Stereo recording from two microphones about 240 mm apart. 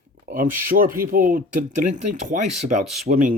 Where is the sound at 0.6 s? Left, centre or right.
Right.